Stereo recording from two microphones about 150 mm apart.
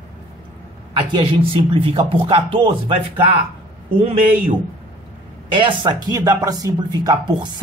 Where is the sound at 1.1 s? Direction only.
35° right (ahead or behind).